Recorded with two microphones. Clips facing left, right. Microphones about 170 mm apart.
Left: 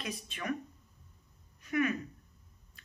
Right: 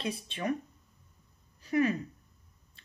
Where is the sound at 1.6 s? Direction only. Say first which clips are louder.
Right 4 dB; 30° right (ahead or behind).